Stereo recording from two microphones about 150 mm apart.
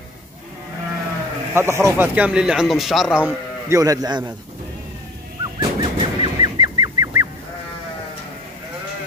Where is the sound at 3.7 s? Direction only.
20° right (ahead or behind).